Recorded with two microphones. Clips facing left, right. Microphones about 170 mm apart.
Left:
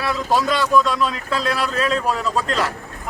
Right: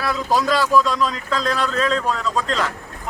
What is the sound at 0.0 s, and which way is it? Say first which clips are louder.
Speech: even; centre (ahead or behind).